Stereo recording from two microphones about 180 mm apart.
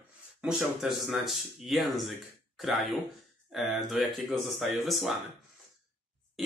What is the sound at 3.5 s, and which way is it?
Speech, centre (ahead or behind).